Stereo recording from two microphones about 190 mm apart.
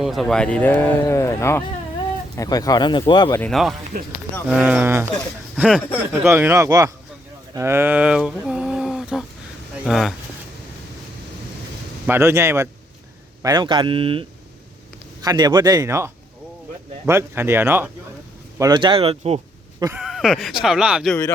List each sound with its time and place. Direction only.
0.0 s speech: centre (ahead or behind); by 3.4 s 25° left (ahead or behind)
3.4 s speech: centre (ahead or behind); by 6.9 s 15° right (ahead or behind)
7.5 s a sound: 15° right (ahead or behind)
9.8 s speech: centre (ahead or behind)
12.0 s speech: 15° right (ahead or behind)
18.6 s speech: 25° right (ahead or behind)
20.0 s speech: centre (ahead or behind)